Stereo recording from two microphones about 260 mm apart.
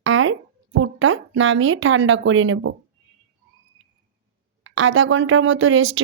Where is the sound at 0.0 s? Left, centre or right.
Right.